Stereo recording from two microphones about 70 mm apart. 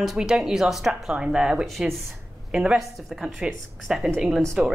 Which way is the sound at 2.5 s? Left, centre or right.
Centre.